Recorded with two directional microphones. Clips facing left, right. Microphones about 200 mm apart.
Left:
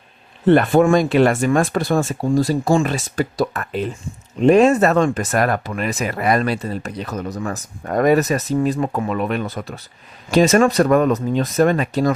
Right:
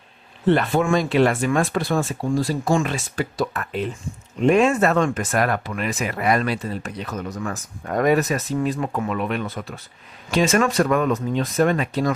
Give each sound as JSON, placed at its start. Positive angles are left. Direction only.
{"t": 0.4, "sound": "speech", "side_deg": 50}